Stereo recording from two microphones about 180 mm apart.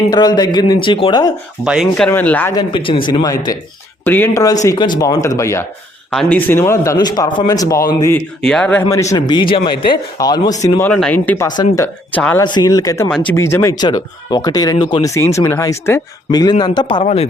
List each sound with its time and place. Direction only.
0.1 s speech: 20° left (ahead or behind)
1.6 s speech: centre (ahead or behind)
2.0 s speech: 10° left (ahead or behind)
2.6 s speech: 30° left (ahead or behind)
8.4 s speech: 5° left (ahead or behind)
8.9 s speech: 15° left (ahead or behind)
12.4 s speech: 25° left (ahead or behind)
13.1 s speech: 5° left (ahead or behind)
13.3 s speech: 15° left (ahead or behind)
17.0 s speech: 35° left (ahead or behind)